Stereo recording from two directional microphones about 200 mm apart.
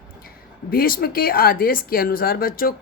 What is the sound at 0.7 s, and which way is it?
Speech, 45° left (ahead or behind).